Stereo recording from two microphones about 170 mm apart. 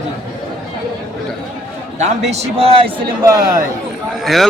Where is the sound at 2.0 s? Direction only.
40° right (ahead or behind).